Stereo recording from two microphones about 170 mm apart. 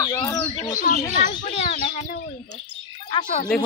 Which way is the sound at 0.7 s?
50° left (ahead or behind).